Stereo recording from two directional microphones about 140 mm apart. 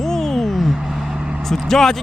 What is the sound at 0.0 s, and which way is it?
Vehicle, 5° left (ahead or behind).